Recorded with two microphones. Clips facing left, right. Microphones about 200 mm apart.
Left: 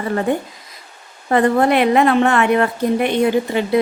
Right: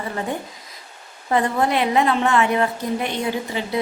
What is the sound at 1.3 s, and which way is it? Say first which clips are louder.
A woman's voice: left 6 dB; 60° left (ahead or behind).